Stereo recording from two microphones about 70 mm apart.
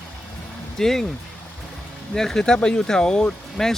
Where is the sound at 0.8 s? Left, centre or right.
Centre.